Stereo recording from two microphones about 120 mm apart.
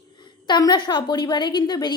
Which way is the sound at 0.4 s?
35° left (ahead or behind).